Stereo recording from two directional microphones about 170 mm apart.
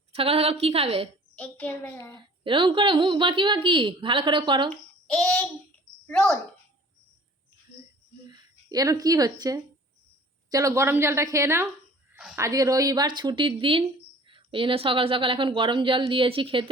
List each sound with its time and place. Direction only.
0.1 s a woman's voice: 35° right (ahead or behind)
1.4 s a child's voice: 10° left (ahead or behind)
2.1 s a woman's voice: 30° right (ahead or behind)
5.0 s child singing: 5° left (ahead or behind)
6.1 s speech: 5° left (ahead or behind)
8.3 s a woman's voice: 20° right (ahead or behind)
12.1 s a sound: centre (ahead or behind)
12.4 s a woman's voice: 20° right (ahead or behind)